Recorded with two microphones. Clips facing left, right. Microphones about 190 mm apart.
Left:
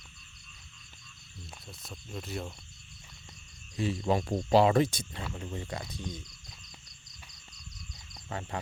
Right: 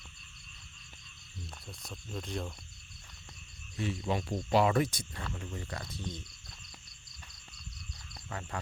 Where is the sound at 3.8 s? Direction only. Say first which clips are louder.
Left 5 dB; 35° left (ahead or behind).